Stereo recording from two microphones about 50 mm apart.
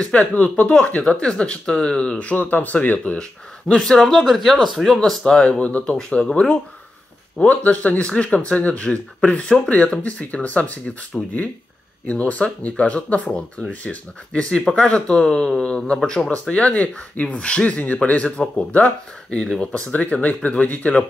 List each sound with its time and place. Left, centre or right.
0.0 s speech: left
2.3 s speech: left
3.2 s speech: centre
4.0 s speech: centre
5.4 s speech: left
5.9 s speech: centre